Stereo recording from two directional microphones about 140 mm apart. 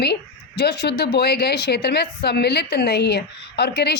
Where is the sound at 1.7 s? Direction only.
90° left.